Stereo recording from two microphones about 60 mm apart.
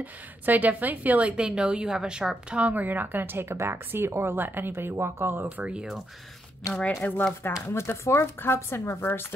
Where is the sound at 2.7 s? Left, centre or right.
Right.